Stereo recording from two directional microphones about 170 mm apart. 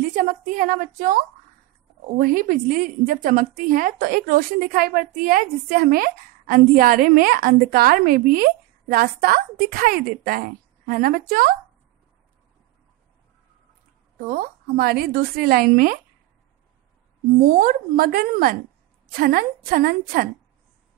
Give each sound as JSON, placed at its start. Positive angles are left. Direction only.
{"t": 0.1, "sound": "a woman's voice", "side_deg": -50}
{"t": 14.3, "sound": "a woman's voice", "side_deg": -60}
{"t": 17.4, "sound": "a woman's voice", "side_deg": -55}